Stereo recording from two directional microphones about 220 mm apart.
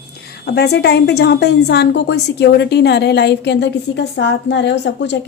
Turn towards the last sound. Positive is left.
turn(degrees=50)  # may be behind; listen again after turning